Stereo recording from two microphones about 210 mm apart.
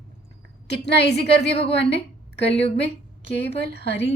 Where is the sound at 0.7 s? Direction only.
55° left (ahead or behind).